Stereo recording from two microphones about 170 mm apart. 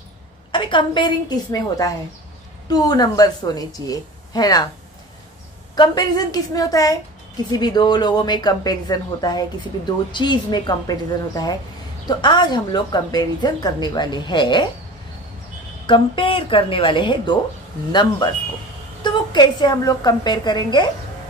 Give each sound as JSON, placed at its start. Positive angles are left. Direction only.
{"t": 0.5, "sound": "a woman's voice", "side_deg": 30}
{"t": 5.8, "sound": "a woman's voice", "side_deg": 25}
{"t": 15.9, "sound": "a woman's voice", "side_deg": 30}
{"t": 19.0, "sound": "a woman's voice", "side_deg": 25}